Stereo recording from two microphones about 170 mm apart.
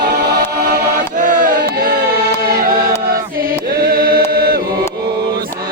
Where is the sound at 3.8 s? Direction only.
60° right (ahead or behind).